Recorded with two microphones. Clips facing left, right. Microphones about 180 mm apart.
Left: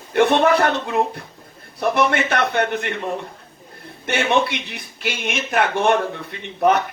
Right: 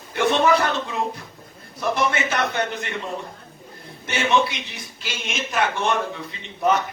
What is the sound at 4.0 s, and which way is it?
A man's voice, 60° left (ahead or behind).